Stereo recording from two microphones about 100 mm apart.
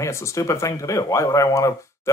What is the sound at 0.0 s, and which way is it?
Speech, 30° left (ahead or behind).